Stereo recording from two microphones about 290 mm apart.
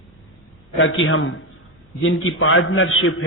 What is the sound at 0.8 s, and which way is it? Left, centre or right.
A man's voice, left.